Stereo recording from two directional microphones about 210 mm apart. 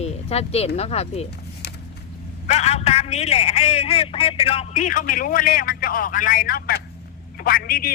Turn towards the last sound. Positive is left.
turn(degrees=45)  # may be behind; listen again after turning